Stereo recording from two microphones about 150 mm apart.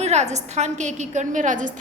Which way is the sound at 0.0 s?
50° right (ahead or behind).